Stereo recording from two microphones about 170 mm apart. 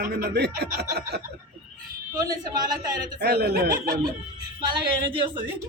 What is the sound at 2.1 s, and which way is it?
A woman's voice, 20° right (ahead or behind).